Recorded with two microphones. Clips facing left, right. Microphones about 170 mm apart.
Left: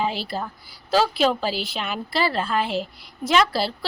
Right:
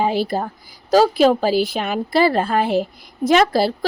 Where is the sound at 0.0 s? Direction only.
50° right (ahead or behind).